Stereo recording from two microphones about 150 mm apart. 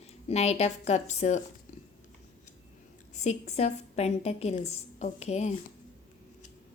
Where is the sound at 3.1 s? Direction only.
50° left (ahead or behind).